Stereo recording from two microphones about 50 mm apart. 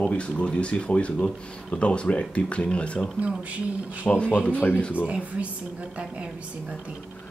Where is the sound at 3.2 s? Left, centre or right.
Right.